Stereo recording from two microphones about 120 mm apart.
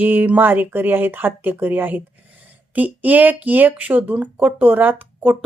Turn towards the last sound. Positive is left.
turn(degrees=-15)  # may be behind; listen again after turning